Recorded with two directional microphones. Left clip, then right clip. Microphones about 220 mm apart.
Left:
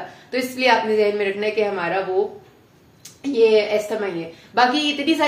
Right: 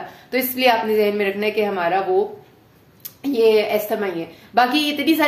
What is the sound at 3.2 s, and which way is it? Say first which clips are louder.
A woman's voice: even; 40° right (ahead or behind).